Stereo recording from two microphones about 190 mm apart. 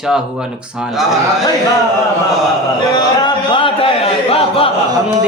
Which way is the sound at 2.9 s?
20° left (ahead or behind).